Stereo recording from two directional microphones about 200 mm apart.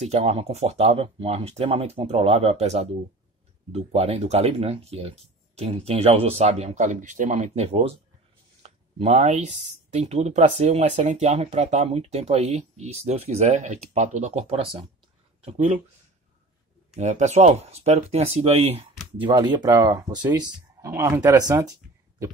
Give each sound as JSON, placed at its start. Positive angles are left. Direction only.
{"t": 0.0, "sound": "speech", "side_deg": -30}
{"t": 16.9, "sound": "speech", "side_deg": -35}